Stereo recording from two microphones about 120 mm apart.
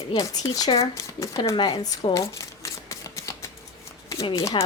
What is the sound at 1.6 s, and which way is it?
Shuffling cards, 40° left (ahead or behind).